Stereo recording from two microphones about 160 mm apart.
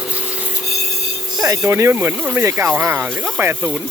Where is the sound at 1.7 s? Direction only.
15° right (ahead or behind).